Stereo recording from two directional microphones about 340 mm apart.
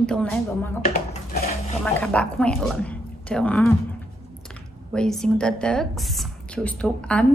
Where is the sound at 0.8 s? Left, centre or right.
Left.